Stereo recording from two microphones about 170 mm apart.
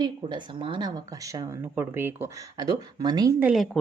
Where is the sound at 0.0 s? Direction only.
25° right (ahead or behind).